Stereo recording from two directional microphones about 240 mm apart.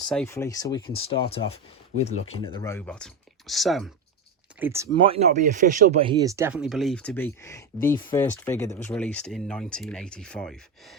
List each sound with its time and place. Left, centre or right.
0.0 s speech: centre
4.6 s speech: centre
4.9 s speech: right; by 10.6 s centre